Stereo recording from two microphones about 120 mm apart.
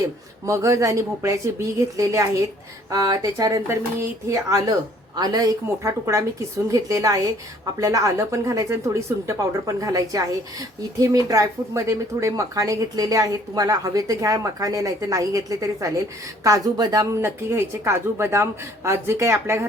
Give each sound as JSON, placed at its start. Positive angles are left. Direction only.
{"t": 0.4, "sound": "speech", "side_deg": -25}
{"t": 11.3, "sound": "speech", "side_deg": -25}